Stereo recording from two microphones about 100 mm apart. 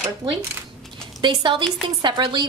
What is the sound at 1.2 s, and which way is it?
A woman's voice, 50° right (ahead or behind).